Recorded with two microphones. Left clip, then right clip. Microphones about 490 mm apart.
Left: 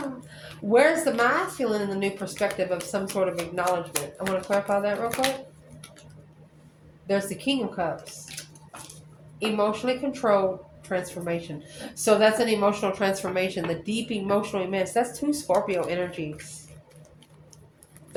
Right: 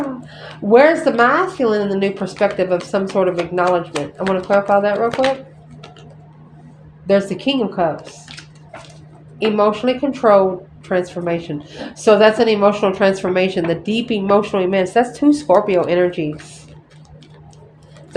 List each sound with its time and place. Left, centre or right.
0.7 s a woman's voice: centre
7.1 s a woman's voice: centre
9.4 s a woman's voice: centre